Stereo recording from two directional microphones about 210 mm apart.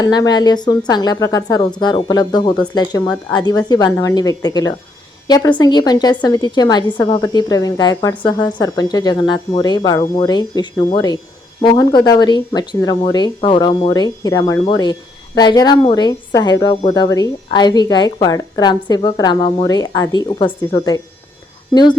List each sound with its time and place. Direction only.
0.0 s a woman's voice: 20° left (ahead or behind)